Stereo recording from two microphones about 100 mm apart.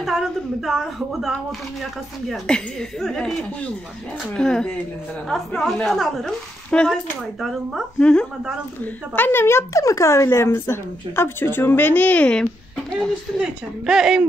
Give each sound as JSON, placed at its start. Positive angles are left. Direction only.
{"t": 0.0, "sound": "a woman's voice", "side_deg": -5}
{"t": 8.0, "sound": "speech", "side_deg": 10}
{"t": 9.1, "sound": "speech", "side_deg": 20}
{"t": 13.4, "sound": "a woman's voice", "side_deg": -5}